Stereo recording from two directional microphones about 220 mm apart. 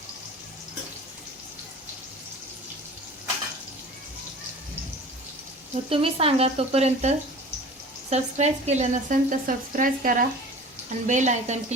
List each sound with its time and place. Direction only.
5.7 s speech: 25° right (ahead or behind)
8.1 s a woman's voice: 30° right (ahead or behind)